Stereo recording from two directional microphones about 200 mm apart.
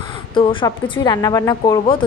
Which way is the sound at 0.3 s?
25° left (ahead or behind).